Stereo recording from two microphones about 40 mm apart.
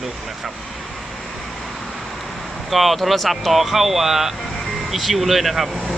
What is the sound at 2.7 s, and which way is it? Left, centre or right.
Speech, centre.